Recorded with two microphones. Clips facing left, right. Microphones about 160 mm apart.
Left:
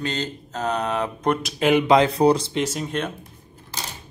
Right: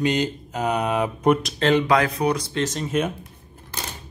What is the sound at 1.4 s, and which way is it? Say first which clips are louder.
Speech: left 1 dB; 10° left (ahead or behind).